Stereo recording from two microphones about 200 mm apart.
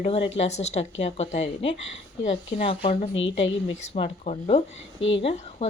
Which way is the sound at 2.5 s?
30° left (ahead or behind).